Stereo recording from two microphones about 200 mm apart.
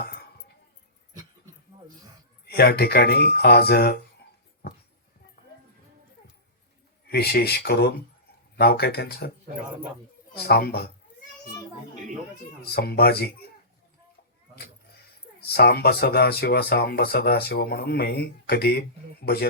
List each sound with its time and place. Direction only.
2.5 s speech: 50° left (ahead or behind)
7.1 s speech: 55° left (ahead or behind)
10.3 s speech: 50° left (ahead or behind)
12.7 s speech: 50° left (ahead or behind)
15.4 s speech: 50° left (ahead or behind)